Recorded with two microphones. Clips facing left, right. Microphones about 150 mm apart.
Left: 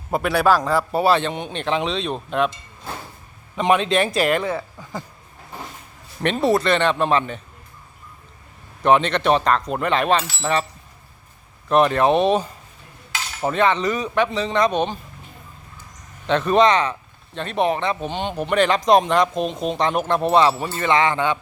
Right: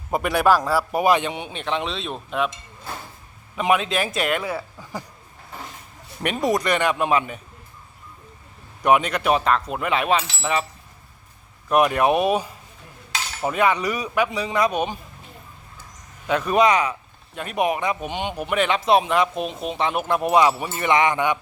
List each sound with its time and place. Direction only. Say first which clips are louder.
0.1 s speech: left 1 dB; 10° right (ahead or behind)
3.5 s speech: left 3 dB; 5° right (ahead or behind)
4.8 s speech: left 1 dB; 15° left (ahead or behind)
6.2 s speech: left 3 dB; 10° right (ahead or behind)
8.8 s speech: left 2 dB; 10° right (ahead or behind)
11.7 s speech: left 2 dB; 10° right (ahead or behind)
13.5 s speech: left 2 dB; 10° right (ahead or behind)
16.2 s speech: left 2 dB; 10° right (ahead or behind)